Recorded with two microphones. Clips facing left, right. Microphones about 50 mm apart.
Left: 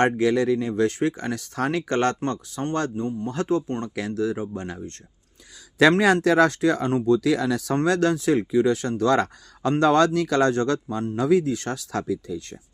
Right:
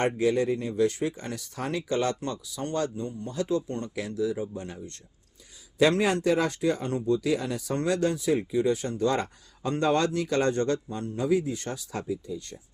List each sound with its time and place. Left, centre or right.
0.0 s speech: left
2.7 s speech: left
3.8 s speech: left
5.8 s a man's voice: left
7.9 s speech: left
9.8 s speech: left